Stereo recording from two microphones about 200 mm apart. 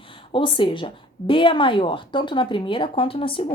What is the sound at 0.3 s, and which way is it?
A woman's voice, 25° left (ahead or behind).